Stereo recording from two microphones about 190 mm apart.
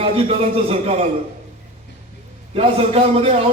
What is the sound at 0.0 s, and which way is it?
A man's voice, 30° right (ahead or behind).